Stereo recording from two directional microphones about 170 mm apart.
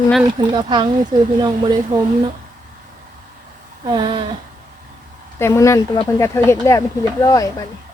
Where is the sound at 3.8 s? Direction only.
30° right (ahead or behind).